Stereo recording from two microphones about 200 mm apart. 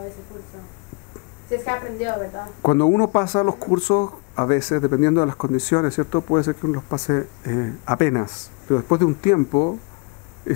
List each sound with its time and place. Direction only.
1.5 s a woman's voice: 20° left (ahead or behind)